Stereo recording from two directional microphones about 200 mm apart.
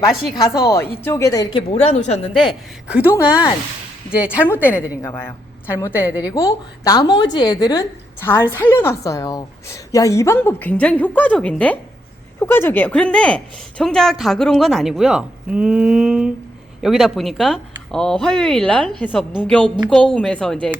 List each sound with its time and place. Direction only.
0.3 s a woman's voice: 15° left (ahead or behind)
1.7 s a woman's voice: 35° left (ahead or behind)
2.9 s a woman's voice: 10° right (ahead or behind)
4.4 s a woman's voice: 10° left (ahead or behind)